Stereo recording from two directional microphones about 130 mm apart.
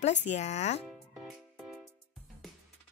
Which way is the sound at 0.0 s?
60° left (ahead or behind).